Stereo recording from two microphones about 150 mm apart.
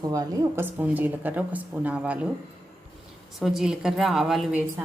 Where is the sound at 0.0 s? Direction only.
25° right (ahead or behind).